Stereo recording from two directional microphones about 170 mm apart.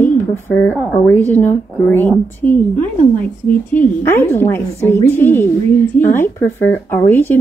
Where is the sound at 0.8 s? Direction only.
Centre (ahead or behind).